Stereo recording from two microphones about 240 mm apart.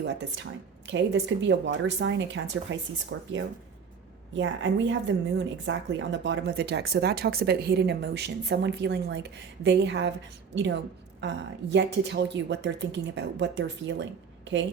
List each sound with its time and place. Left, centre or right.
0.0 s a woman's voice: right
4.4 s a woman's voice: right